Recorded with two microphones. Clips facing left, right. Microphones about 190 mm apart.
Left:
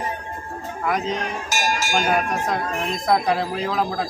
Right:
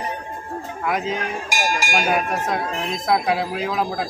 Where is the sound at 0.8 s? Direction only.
Centre (ahead or behind).